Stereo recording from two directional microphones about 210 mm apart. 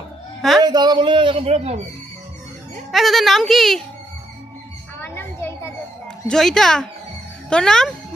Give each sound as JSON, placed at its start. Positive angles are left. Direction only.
{"t": 0.6, "sound": "a man's voice", "side_deg": -20}
{"t": 2.9, "sound": "a woman's voice", "side_deg": 0}
{"t": 4.9, "sound": "children playing", "side_deg": 10}
{"t": 6.2, "sound": "a woman's voice", "side_deg": 5}